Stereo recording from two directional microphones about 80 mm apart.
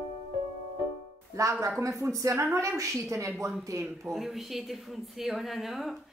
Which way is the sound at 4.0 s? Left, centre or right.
Centre.